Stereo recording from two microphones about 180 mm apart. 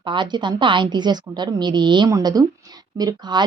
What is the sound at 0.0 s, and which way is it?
Speech, 25° right (ahead or behind).